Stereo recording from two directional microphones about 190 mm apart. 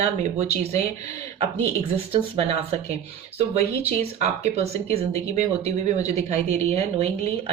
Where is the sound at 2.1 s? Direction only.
30° right (ahead or behind).